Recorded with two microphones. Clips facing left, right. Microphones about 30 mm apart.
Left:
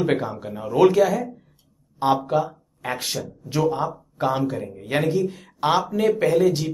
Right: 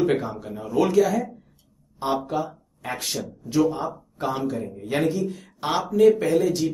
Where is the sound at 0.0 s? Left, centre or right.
Centre.